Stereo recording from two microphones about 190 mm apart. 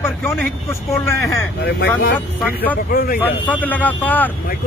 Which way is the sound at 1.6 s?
60° left (ahead or behind).